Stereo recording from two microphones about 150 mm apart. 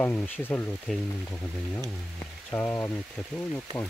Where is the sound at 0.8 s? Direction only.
5° left (ahead or behind).